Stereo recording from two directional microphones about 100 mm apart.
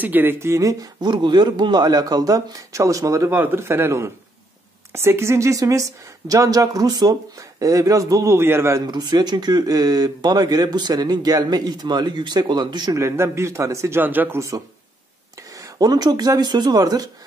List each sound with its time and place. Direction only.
0.0 s speech: 20° right (ahead or behind)
8.8 s speech: 45° right (ahead or behind)
12.9 s speech: 25° right (ahead or behind)
15.5 s speech: 40° right (ahead or behind)